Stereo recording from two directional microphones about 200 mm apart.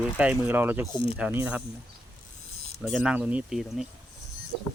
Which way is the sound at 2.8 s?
Centre (ahead or behind).